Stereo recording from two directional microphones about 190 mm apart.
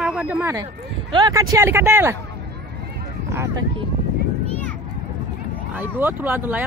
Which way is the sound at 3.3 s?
15° right (ahead or behind).